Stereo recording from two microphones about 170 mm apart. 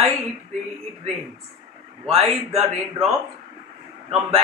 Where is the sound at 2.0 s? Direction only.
35° right (ahead or behind).